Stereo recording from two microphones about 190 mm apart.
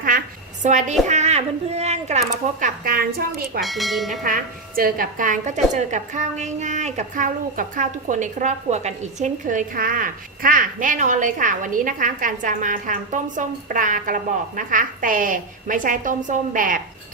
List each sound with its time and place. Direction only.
0.6 s speech: 40° right (ahead or behind)
3.6 s speech: centre (ahead or behind)
4.2 s a woman's voice: 45° right (ahead or behind)